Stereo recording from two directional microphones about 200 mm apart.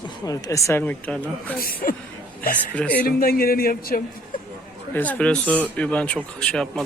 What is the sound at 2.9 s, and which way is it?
A man's voice, 45° left (ahead or behind).